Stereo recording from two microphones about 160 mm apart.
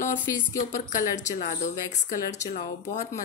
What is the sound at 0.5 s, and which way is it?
Speech, 55° left (ahead or behind).